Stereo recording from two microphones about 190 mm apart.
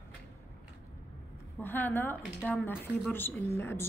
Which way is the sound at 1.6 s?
10° left (ahead or behind).